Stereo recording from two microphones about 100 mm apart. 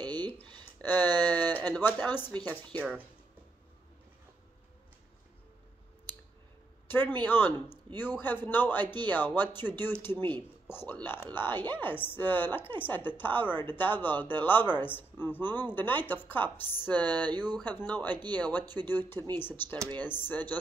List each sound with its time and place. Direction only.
0.0 s a sound: 45° right (ahead or behind)
0.7 s speech: 15° left (ahead or behind)
1.2 s a sound: 20° left (ahead or behind)
1.7 s a man's voice: 20° left (ahead or behind)
6.9 s a man's voice: 20° left (ahead or behind)
18.1 s speech: 45° right (ahead or behind)
18.9 s a man's voice: 20° left (ahead or behind)